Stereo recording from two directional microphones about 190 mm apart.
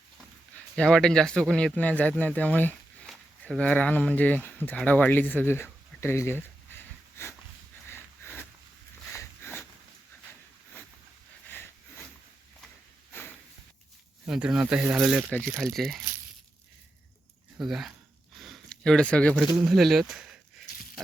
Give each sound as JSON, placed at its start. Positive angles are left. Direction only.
{"t": 0.8, "sound": "speech", "side_deg": 5}
{"t": 7.9, "sound": "sniff", "side_deg": 10}
{"t": 9.1, "sound": "a sound", "side_deg": 10}
{"t": 14.3, "sound": "speech", "side_deg": -5}
{"t": 15.3, "sound": "speech", "side_deg": 5}
{"t": 17.6, "sound": "speech", "side_deg": 0}
{"t": 18.3, "sound": "a sound", "side_deg": 0}
{"t": 19.5, "sound": "speech", "side_deg": 0}